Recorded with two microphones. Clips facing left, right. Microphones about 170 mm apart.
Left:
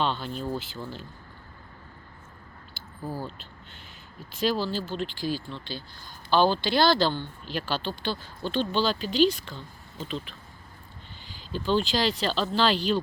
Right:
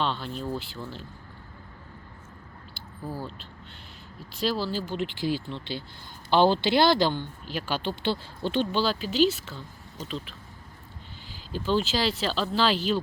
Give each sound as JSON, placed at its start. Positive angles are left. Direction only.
{"t": 0.0, "sound": "speech", "side_deg": 0}
{"t": 2.7, "sound": "a sound", "side_deg": 0}
{"t": 4.4, "sound": "speech", "side_deg": -5}
{"t": 8.7, "sound": "speech", "side_deg": -5}
{"t": 11.5, "sound": "speech", "side_deg": -5}